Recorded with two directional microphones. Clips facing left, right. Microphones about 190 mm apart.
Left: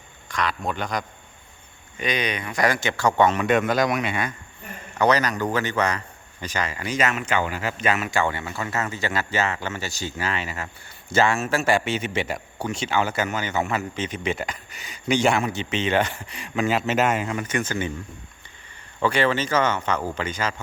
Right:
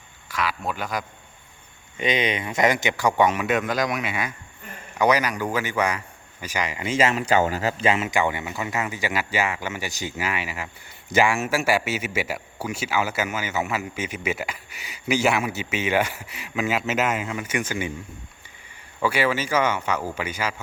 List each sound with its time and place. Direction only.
0.3 s speech: 5° right (ahead or behind)
2.0 s speech: 25° right (ahead or behind)
7.9 s speech: 25° right (ahead or behind)
19.0 s speech: 10° right (ahead or behind)